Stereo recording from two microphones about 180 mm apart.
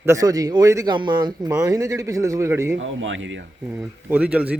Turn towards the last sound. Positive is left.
turn(degrees=-5)  # may be behind; listen again after turning